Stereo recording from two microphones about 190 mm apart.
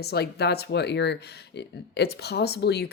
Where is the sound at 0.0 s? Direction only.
60° left (ahead or behind).